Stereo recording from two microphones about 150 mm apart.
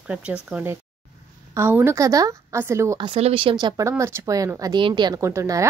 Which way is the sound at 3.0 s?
40° right (ahead or behind).